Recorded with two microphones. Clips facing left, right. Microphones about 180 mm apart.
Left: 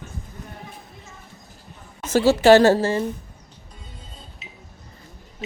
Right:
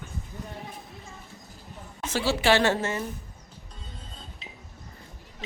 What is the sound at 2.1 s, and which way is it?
Speech, 45° left (ahead or behind).